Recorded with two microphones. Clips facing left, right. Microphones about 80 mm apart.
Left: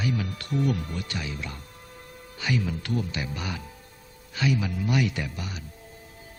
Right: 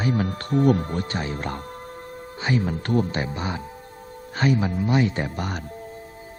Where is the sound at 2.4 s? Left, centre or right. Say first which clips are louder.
Right 4 dB; right.